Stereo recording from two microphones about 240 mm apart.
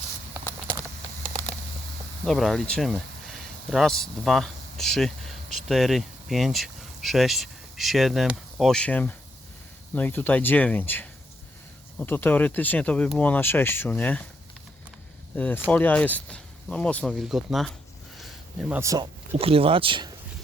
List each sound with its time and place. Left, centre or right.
2.2 s speech: centre
15.4 s speech: centre
18.2 s a sound: centre
19.4 s speech: right